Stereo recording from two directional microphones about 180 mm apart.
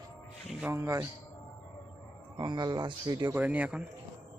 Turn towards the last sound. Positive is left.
turn(degrees=-5)  # may be behind; listen again after turning